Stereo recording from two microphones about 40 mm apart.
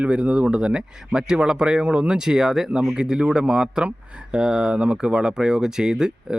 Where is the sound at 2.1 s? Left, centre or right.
Centre.